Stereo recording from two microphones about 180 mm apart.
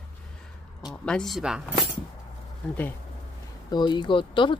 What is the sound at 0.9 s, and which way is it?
Speech, 5° left (ahead or behind).